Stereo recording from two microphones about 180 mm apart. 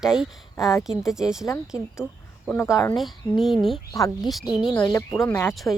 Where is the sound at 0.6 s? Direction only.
20° left (ahead or behind).